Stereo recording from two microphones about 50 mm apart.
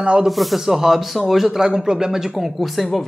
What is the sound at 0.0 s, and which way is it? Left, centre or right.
Speech, centre.